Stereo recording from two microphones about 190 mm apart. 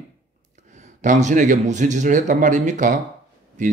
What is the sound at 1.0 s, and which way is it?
A man's voice, 40° right (ahead or behind).